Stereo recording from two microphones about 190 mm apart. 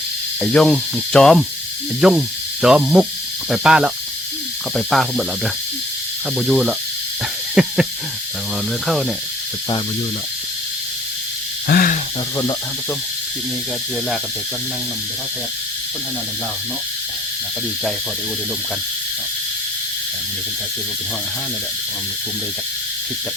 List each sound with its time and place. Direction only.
0.4 s speech: 5° left (ahead or behind)
6.3 s speech: centre (ahead or behind)
7.5 s owl: 5° right (ahead or behind)
8.9 s speech: centre (ahead or behind)
11.7 s snake: 50° left (ahead or behind)